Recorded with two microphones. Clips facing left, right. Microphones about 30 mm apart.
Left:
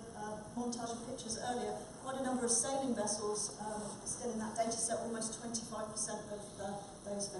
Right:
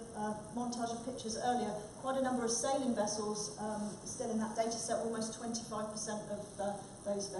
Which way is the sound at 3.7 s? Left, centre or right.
Left.